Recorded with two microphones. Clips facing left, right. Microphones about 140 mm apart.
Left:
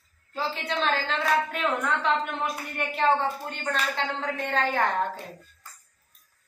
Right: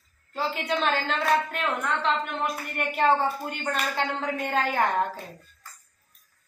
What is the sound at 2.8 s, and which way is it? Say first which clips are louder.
A woman's voice: right 1 dB; 5° right (ahead or behind).